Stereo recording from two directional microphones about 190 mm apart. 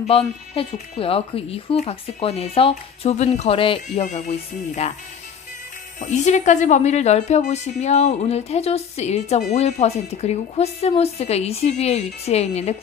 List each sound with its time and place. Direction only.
0.1 s speech: 30° left (ahead or behind)
5.9 s speech: 40° left (ahead or behind)